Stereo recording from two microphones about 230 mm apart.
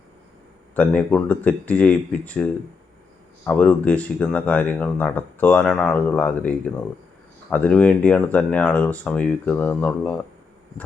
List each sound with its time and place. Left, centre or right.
0.8 s speech: centre